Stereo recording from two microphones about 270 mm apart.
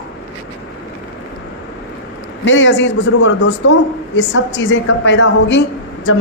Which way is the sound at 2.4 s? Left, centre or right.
Left.